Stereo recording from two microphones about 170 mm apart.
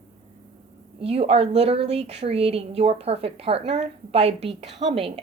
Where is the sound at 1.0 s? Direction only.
35° right (ahead or behind).